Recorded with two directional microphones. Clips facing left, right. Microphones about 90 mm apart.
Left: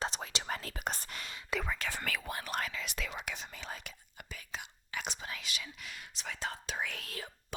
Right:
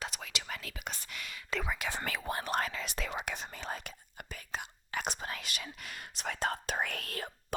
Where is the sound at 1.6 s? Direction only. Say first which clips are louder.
Right 1 dB; 10° right (ahead or behind).